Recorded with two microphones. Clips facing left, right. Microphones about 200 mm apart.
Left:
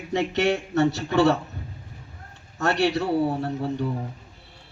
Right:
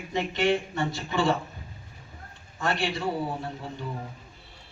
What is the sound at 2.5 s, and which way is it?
Speech, 70° left (ahead or behind).